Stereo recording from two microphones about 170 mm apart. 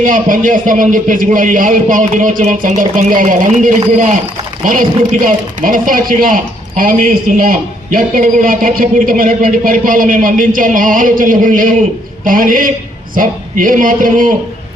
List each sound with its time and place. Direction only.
0.0 s a man's voice: 50° right (ahead or behind)